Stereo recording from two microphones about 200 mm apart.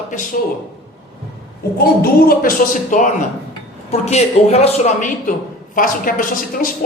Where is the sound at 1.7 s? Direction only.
50° left (ahead or behind).